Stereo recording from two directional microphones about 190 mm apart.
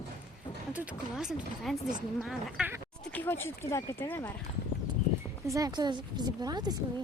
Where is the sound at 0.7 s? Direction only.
5° right (ahead or behind).